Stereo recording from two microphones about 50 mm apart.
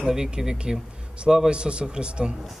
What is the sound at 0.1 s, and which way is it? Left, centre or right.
A man's voice, centre.